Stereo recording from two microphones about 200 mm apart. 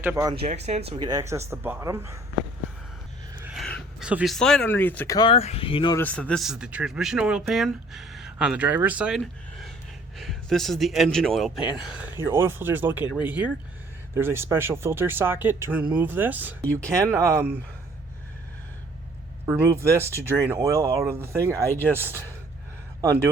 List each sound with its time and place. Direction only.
0.0 s speech: 15° right (ahead or behind)
0.3 s speech: 30° right (ahead or behind); by 2.1 s 15° right (ahead or behind)
3.5 s a sound: centre (ahead or behind)
4.1 s speech: centre (ahead or behind); by 6.0 s 25° left (ahead or behind)
6.0 s speech: 5° left (ahead or behind); by 17.6 s 15° right (ahead or behind)
19.5 s speech: 15° right (ahead or behind)